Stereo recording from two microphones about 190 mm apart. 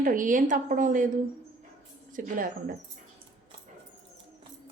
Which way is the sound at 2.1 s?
45° right (ahead or behind).